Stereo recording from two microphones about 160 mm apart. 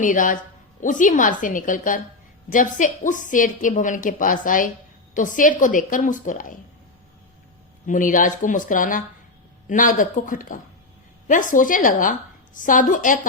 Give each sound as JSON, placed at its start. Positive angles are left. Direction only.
{"t": 0.0, "sound": "a woman's voice", "side_deg": 55}
{"t": 7.9, "sound": "a woman's voice", "side_deg": 55}